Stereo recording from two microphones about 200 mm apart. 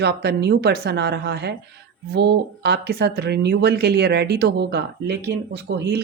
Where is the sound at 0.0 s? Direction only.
55° right (ahead or behind).